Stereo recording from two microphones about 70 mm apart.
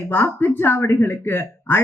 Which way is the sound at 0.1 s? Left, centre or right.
Left.